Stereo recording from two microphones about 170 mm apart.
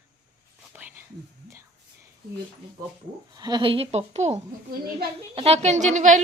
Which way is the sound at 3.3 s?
25° right (ahead or behind).